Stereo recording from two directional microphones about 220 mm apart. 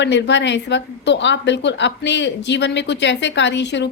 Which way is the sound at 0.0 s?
55° left (ahead or behind).